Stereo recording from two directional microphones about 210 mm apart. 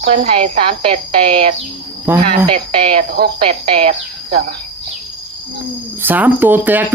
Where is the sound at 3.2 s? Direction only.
50° right (ahead or behind).